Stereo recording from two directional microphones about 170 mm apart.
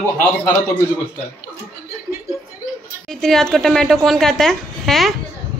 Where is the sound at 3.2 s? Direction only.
Centre (ahead or behind).